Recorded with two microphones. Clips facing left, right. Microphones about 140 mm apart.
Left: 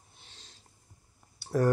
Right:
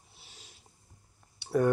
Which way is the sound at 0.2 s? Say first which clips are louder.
Right 1 dB; 10° right (ahead or behind).